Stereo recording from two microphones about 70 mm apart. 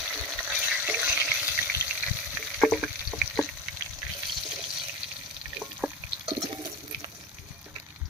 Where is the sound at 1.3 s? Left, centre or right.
Centre.